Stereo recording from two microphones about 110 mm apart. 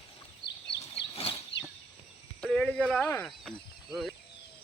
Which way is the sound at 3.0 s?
15° left (ahead or behind).